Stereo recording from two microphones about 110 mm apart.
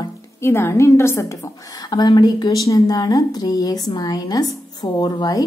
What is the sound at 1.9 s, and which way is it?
A woman's voice, 40° left (ahead or behind).